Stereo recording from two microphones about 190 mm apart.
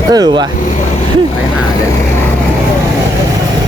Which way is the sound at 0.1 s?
20° right (ahead or behind).